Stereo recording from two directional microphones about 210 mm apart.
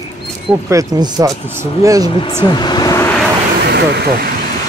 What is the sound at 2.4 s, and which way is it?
Vehicle, 20° left (ahead or behind).